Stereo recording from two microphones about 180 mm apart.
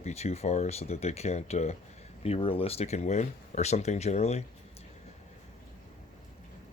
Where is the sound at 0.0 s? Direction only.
35° left (ahead or behind).